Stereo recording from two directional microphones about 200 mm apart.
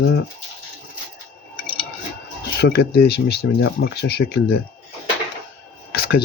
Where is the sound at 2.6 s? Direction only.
55° left (ahead or behind).